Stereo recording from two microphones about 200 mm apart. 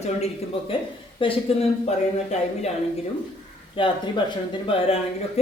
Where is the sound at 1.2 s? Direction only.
25° left (ahead or behind).